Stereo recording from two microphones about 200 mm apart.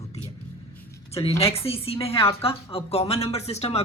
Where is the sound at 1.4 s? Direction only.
30° left (ahead or behind).